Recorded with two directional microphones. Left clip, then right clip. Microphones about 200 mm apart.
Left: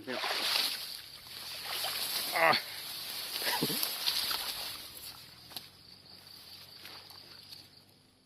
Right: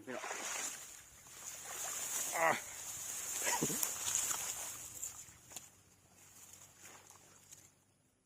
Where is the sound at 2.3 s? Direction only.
5° right (ahead or behind).